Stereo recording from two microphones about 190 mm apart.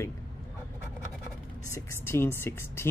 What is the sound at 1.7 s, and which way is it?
Speech, 15° left (ahead or behind).